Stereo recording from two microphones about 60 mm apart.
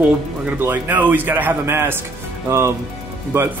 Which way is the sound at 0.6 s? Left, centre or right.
Right.